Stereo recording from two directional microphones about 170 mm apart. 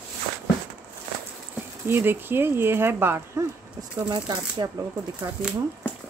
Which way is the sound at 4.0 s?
25° right (ahead or behind).